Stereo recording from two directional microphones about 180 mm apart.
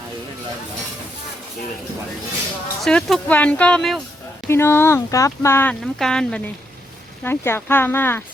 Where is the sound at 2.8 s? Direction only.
5° left (ahead or behind).